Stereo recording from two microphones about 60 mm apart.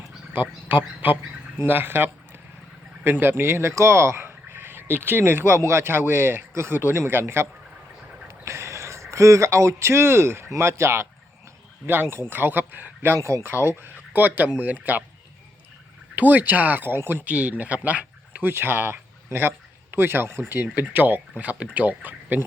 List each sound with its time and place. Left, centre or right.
0.3 s speech: right
8.3 s a sound: right
10.6 s speech: right
13.1 s speech: right
13.4 s speech: right
16.1 s speech: right
17.2 s speech: right
18.4 s speech: right
20.7 s speech: right